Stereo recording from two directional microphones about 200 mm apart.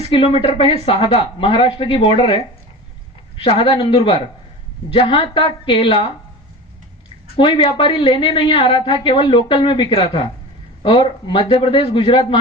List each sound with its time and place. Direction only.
0.1 s a woman's voice: 30° left (ahead or behind)
7.3 s a woman's voice: 25° left (ahead or behind)